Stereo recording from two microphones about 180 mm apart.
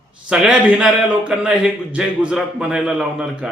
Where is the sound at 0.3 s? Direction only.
5° right (ahead or behind).